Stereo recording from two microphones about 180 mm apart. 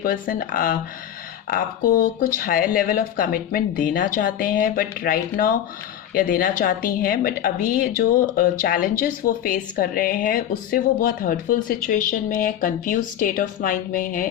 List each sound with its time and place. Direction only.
0.0 s a woman's voice: 50° left (ahead or behind)